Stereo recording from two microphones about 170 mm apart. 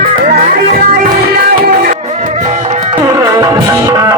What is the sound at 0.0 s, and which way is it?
Music, 55° right (ahead or behind).